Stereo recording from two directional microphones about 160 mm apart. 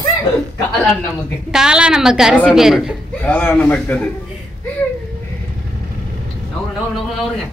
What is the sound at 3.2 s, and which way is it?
Speech, 10° left (ahead or behind).